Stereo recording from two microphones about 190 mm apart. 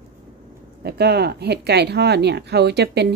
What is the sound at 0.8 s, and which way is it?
A woman's voice, 60° right (ahead or behind).